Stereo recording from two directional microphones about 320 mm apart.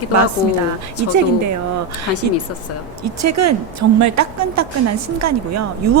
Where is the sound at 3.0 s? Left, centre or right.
Right.